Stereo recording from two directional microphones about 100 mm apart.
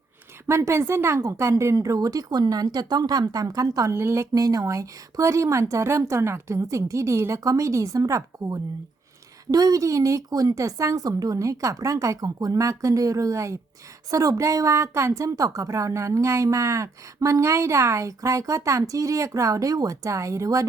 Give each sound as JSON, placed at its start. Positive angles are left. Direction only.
{"t": 0.4, "sound": "a woman's voice", "side_deg": -25}